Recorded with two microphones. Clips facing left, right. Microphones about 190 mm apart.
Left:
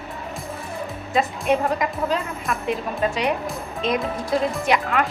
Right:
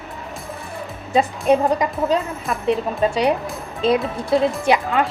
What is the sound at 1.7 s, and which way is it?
A woman's voice, 30° right (ahead or behind).